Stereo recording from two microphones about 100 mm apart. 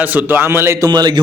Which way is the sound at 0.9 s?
45° right (ahead or behind).